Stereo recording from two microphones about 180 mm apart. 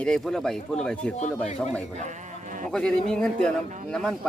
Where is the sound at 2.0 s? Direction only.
45° right (ahead or behind).